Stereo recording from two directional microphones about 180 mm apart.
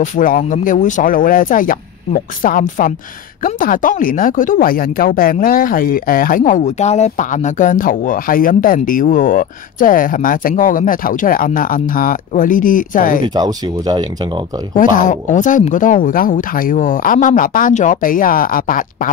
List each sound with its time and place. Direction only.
0.0 s speech: 45° left (ahead or behind)
13.3 s speech: 20° right (ahead or behind)
14.8 s speech: 45° left (ahead or behind)